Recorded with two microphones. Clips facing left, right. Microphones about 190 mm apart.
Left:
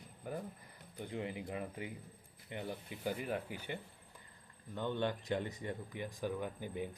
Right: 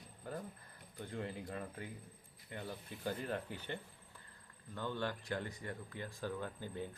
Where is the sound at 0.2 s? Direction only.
15° left (ahead or behind).